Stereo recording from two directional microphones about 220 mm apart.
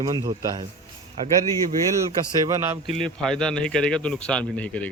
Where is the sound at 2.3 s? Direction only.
15° right (ahead or behind).